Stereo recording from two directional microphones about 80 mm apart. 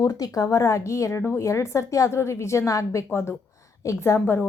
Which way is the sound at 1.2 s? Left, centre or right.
Left.